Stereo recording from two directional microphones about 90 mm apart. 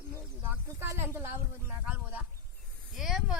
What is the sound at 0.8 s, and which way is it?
Speech, 25° right (ahead or behind).